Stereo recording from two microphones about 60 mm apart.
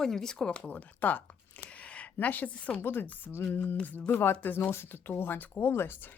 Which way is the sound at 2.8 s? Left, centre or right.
Left.